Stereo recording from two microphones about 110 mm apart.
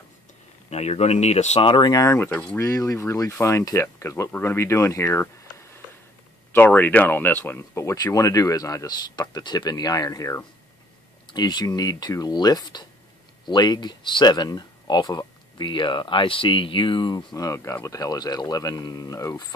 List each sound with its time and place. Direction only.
0.7 s speech: 75° left (ahead or behind)
1.7 s speech: 40° left (ahead or behind)
2.1 s speech: 15° left (ahead or behind)
2.6 s speech: 30° left (ahead or behind)
6.5 s speech: 15° left (ahead or behind); by 19.4 s 35° left (ahead or behind)